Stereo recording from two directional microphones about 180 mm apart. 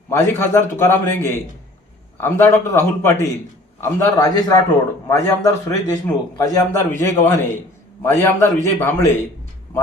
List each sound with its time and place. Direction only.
0.1 s a man's voice: 15° left (ahead or behind)